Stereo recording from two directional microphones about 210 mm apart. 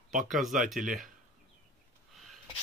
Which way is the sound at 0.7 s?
Centre (ahead or behind).